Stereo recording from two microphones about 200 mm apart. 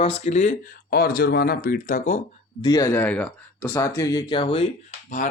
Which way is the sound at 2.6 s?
15° left (ahead or behind).